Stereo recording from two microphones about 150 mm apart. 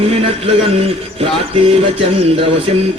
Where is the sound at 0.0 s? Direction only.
40° right (ahead or behind).